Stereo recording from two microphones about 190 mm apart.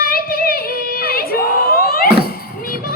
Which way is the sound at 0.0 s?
50° left (ahead or behind).